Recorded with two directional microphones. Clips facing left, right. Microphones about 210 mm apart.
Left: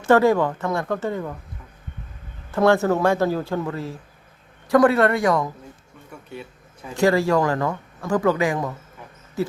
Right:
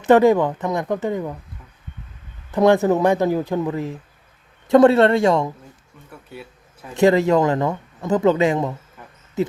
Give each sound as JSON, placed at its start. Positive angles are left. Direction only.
{"t": 0.0, "sound": "speech", "side_deg": -20}
{"t": 2.5, "sound": "speech", "side_deg": -15}
{"t": 6.1, "sound": "speech", "side_deg": -5}
{"t": 6.9, "sound": "speech", "side_deg": -20}
{"t": 9.4, "sound": "owl", "side_deg": -20}